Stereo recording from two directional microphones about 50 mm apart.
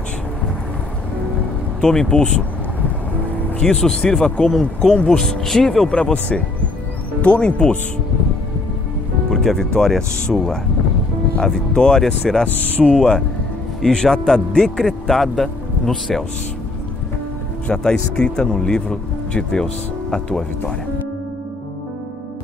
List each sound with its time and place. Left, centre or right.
1.8 s speech: centre
3.5 s speech: centre
9.3 s speech: centre
12.8 s speech: centre
17.6 s speech: centre